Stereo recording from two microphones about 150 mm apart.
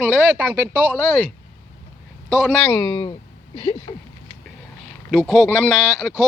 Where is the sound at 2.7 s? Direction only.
30° left (ahead or behind).